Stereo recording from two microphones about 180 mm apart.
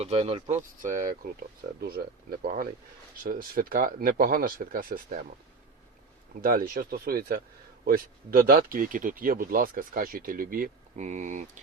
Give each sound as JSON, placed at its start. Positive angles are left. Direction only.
{"t": 0.0, "sound": "speech", "side_deg": -35}
{"t": 1.8, "sound": "speech", "side_deg": -60}
{"t": 2.4, "sound": "speech", "side_deg": -50}
{"t": 6.4, "sound": "speech", "side_deg": -55}